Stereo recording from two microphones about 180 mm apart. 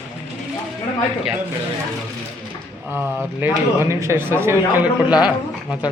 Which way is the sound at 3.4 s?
15° right (ahead or behind).